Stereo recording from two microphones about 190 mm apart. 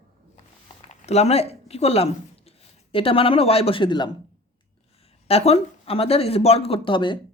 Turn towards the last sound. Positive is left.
turn(degrees=25)  # may be behind; listen again after turning